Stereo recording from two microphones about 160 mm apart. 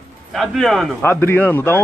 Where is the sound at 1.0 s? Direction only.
15° left (ahead or behind).